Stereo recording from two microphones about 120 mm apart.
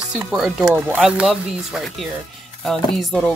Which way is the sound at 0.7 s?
15° right (ahead or behind).